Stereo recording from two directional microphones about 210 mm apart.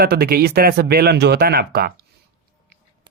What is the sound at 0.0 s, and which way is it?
Speech, 50° right (ahead or behind).